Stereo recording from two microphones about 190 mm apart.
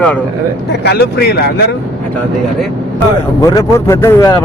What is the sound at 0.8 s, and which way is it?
Speech, 60° left (ahead or behind).